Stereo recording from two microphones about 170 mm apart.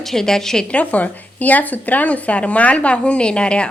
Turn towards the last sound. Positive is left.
turn(degrees=5)  # may be behind; listen again after turning